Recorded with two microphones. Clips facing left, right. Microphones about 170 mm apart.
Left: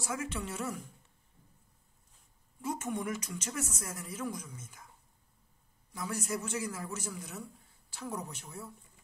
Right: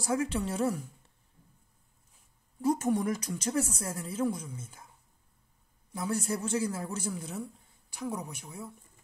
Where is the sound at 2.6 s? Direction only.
35° right (ahead or behind).